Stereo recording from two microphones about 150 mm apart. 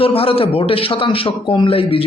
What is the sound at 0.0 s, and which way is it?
Speech, 40° left (ahead or behind).